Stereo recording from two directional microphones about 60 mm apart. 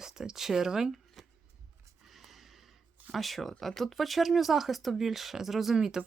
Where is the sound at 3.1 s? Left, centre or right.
Centre.